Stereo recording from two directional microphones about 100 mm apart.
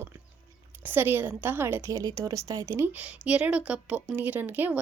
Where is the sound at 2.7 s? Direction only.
20° right (ahead or behind).